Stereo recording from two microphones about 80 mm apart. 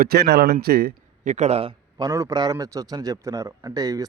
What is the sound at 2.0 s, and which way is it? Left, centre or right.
Speech, right.